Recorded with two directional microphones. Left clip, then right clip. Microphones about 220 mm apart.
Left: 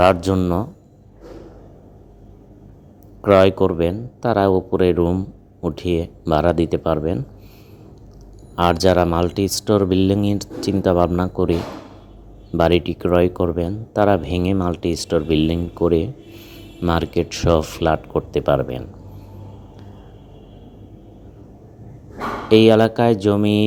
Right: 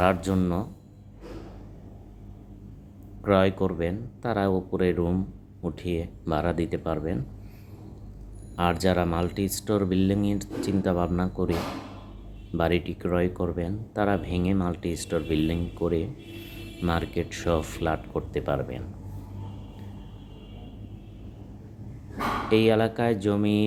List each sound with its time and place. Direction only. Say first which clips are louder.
0.0 s speech: left 9 dB; 25° left (ahead or behind)
3.2 s speech: left 10 dB; 30° left (ahead or behind)
8.5 s speech: left 9 dB; 25° left (ahead or behind)
12.5 s speech: left 9 dB; 30° left (ahead or behind)
22.4 s speech: left 10 dB; 30° left (ahead or behind)